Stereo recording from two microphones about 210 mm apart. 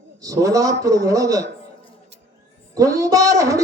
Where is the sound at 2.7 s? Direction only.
15° right (ahead or behind).